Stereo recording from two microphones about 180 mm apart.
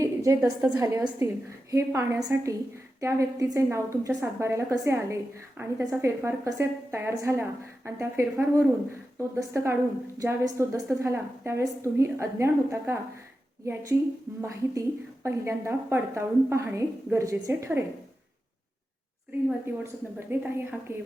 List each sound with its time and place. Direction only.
0.0 s a woman's voice: 15° right (ahead or behind)
14.4 s a woman's voice: 15° right (ahead or behind)
19.8 s a woman's voice: 10° right (ahead or behind)